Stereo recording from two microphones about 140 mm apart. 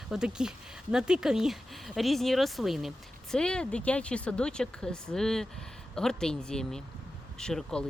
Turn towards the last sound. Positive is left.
turn(degrees=5)  # may be behind; listen again after turning